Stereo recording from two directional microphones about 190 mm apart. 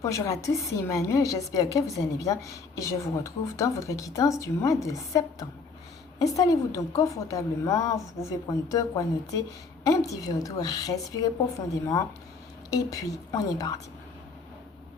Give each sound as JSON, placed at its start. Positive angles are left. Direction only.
{"t": 0.0, "sound": "a woman's voice", "side_deg": 15}
{"t": 12.7, "sound": "a woman's voice", "side_deg": 20}